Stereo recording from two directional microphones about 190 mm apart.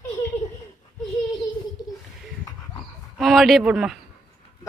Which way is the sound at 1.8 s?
20° left (ahead or behind).